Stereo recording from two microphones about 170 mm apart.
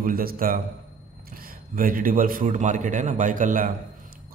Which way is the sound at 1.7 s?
55° right (ahead or behind).